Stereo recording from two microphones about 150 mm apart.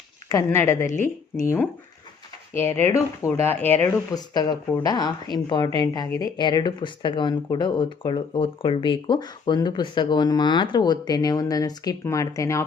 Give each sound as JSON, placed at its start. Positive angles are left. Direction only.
{"t": 0.3, "sound": "speech", "side_deg": 15}
{"t": 4.1, "sound": "speech", "side_deg": 25}